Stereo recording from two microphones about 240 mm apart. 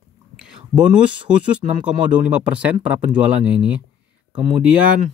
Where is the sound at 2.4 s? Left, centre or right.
Centre.